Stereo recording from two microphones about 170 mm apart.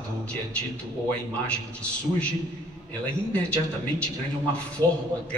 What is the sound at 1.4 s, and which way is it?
Speech, 5° left (ahead or behind).